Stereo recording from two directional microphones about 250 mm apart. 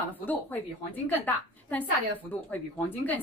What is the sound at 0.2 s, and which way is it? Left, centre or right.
A woman's voice, centre.